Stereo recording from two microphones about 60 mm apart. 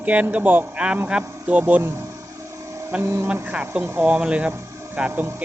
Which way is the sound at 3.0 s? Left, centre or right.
Right.